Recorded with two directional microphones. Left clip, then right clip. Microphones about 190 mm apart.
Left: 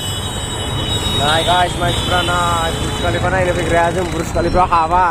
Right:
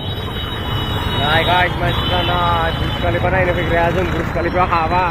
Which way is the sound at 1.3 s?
25° left (ahead or behind).